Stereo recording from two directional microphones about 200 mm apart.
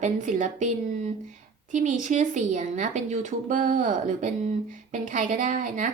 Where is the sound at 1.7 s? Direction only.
40° right (ahead or behind).